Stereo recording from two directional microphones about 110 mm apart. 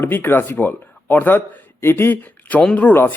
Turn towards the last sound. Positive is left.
turn(degrees=20)  # may be behind; listen again after turning